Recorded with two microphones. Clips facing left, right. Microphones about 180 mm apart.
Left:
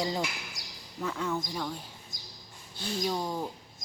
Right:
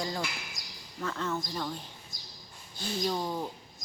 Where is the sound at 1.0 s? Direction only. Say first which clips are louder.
Left 1 dB; 5° left (ahead or behind).